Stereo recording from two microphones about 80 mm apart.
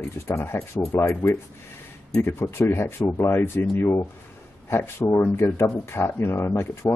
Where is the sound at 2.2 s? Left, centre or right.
Left.